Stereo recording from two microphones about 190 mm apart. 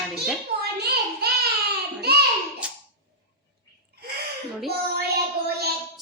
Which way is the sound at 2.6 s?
5° right (ahead or behind).